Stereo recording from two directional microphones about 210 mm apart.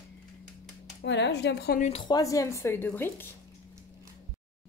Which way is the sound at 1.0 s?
55° left (ahead or behind).